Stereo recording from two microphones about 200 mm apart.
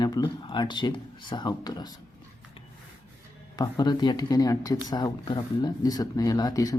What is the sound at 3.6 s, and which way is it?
Speech, 20° left (ahead or behind).